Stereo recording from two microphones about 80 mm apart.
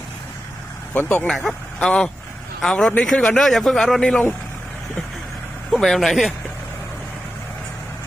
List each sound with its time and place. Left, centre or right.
0.9 s speech: left
1.3 s a man's voice: centre
5.7 s a man's voice: centre